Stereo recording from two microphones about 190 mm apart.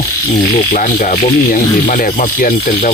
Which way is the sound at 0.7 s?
45° left (ahead or behind).